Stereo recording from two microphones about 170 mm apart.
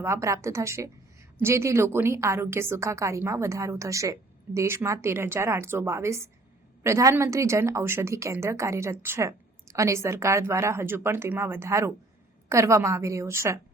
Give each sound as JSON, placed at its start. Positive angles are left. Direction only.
{"t": 0.0, "sound": "a woman's voice", "side_deg": -15}